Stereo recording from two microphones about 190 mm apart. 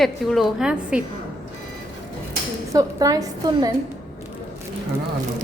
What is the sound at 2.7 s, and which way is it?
Speech, 20° right (ahead or behind).